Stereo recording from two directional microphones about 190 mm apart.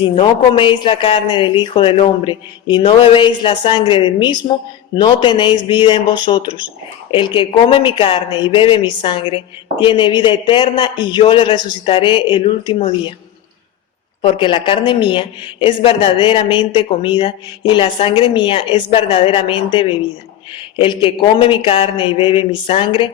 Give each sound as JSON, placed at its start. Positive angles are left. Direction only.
{"t": 0.0, "sound": "speech", "side_deg": 25}
{"t": 14.2, "sound": "speech", "side_deg": 25}